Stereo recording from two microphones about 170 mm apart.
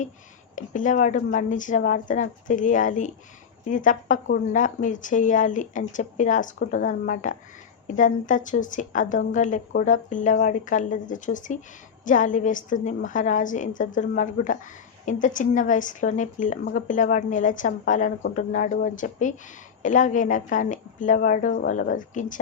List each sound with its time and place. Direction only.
0.5 s a woman's voice: 50° left (ahead or behind)